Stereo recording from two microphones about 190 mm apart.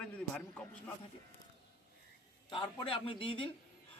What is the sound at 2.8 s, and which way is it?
Speech, 30° left (ahead or behind).